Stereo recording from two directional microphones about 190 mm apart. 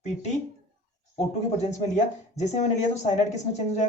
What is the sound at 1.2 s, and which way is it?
Speech, 35° left (ahead or behind).